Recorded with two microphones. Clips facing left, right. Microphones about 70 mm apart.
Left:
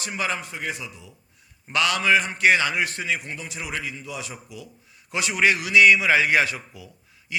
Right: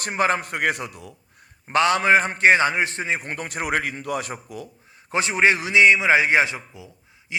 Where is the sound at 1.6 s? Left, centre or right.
Right.